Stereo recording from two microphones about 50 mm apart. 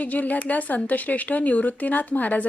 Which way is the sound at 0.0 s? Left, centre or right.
Left.